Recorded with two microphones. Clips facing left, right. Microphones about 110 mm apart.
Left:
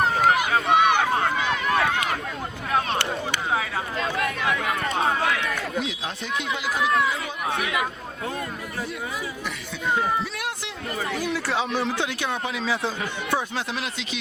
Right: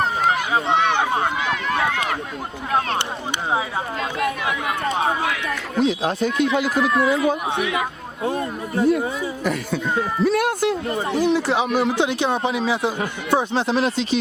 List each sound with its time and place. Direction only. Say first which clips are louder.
0.9 s speech: right 2 dB; 15° right (ahead or behind)
1.8 s speech: right 2 dB; 25° right (ahead or behind)
4.4 s speech: right 2 dB; 25° right (ahead or behind)
5.8 s speech: right 11 dB; 40° right (ahead or behind)
7.5 s speech: right 3 dB; 25° right (ahead or behind)
8.8 s speech: right 13 dB; 45° right (ahead or behind)
10.2 s a sound: right 14 dB; 50° right (ahead or behind)
10.8 s speech: right 8 dB; 30° right (ahead or behind)